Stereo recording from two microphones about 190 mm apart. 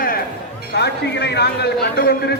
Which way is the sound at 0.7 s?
60° left (ahead or behind).